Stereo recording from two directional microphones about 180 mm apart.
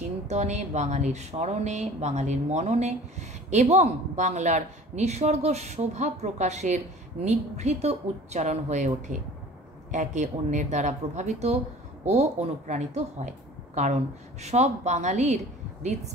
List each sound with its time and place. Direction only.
0.3 s speech: 40° right (ahead or behind)
14.4 s speech: 40° right (ahead or behind)